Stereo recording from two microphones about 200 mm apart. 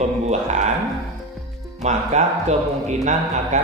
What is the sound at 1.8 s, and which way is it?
Speech, 35° right (ahead or behind).